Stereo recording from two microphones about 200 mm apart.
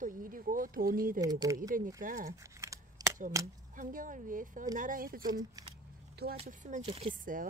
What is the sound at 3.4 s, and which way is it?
Speech, 15° right (ahead or behind).